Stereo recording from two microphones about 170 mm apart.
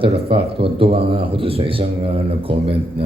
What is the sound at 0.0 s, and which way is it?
Speech, 35° right (ahead or behind).